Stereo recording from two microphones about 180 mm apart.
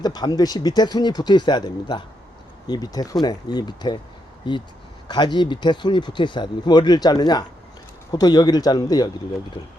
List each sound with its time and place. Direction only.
0.0 s speech: 20° left (ahead or behind)